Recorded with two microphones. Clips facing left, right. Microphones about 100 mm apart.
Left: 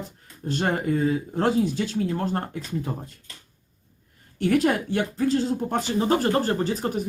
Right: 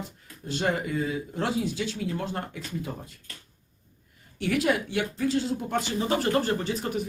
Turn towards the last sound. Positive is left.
turn(degrees=40)  # may be behind; listen again after turning